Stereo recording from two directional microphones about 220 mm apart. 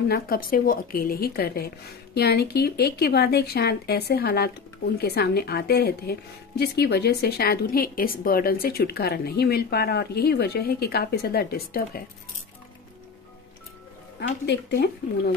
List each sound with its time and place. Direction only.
0.1 s a woman's voice: 40° left (ahead or behind)
14.4 s a woman's voice: 50° left (ahead or behind)